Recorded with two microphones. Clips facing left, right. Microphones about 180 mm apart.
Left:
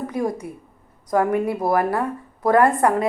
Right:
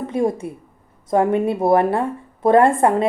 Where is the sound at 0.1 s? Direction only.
25° right (ahead or behind).